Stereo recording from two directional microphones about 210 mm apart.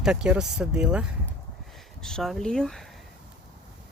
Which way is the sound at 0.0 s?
5° right (ahead or behind).